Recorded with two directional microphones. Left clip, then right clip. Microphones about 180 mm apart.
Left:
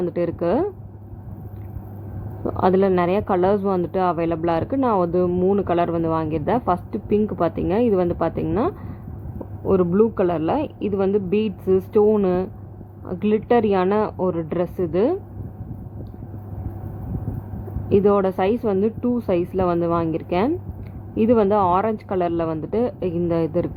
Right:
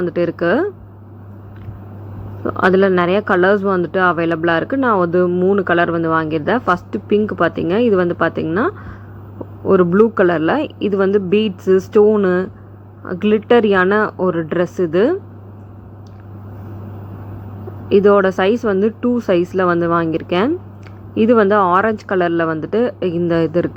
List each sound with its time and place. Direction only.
0.1 s speech: 15° right (ahead or behind)
2.5 s speech: 10° right (ahead or behind)
17.8 s speech: 15° right (ahead or behind)